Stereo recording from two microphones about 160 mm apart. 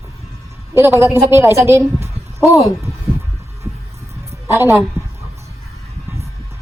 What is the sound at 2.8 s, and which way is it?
Hum, 20° right (ahead or behind).